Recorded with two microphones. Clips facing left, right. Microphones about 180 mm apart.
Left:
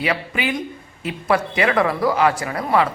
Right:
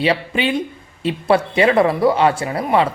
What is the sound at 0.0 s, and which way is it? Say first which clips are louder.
Speech: right 5 dB; 30° right (ahead or behind).